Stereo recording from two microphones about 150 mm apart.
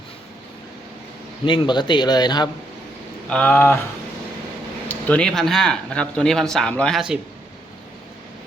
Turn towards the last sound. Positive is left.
turn(degrees=0)  # may be behind; listen again after turning